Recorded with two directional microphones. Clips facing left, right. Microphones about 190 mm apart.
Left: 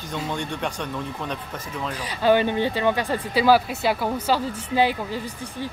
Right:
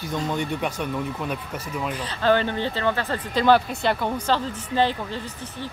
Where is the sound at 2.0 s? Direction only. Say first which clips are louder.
Left 2 dB; 10° left (ahead or behind).